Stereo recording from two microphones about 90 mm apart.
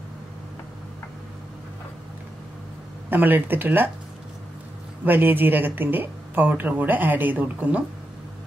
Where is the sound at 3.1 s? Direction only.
20° right (ahead or behind).